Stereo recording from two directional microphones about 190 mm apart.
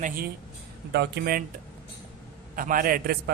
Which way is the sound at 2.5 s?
45° right (ahead or behind).